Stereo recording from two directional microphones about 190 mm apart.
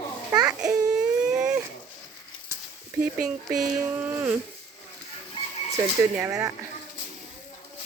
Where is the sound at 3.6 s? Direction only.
10° right (ahead or behind).